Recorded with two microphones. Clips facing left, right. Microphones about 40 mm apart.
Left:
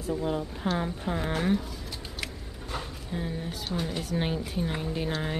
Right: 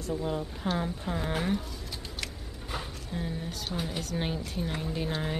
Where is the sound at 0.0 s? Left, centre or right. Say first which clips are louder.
Left 2 dB; centre.